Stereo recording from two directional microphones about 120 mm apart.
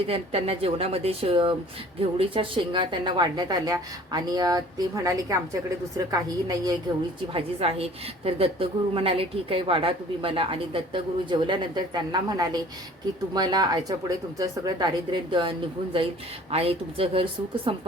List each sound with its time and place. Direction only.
0.1 s a woman's voice: 55° right (ahead or behind); by 6.7 s 30° right (ahead or behind)
7.3 s a woman's voice: 55° right (ahead or behind)